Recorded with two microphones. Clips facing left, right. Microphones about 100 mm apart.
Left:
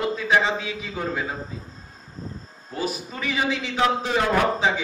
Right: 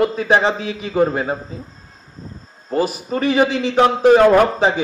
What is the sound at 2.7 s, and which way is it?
A man's voice, 60° right (ahead or behind).